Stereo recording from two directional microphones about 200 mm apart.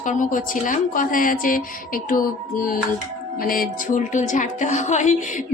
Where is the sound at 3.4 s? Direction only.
45° left (ahead or behind).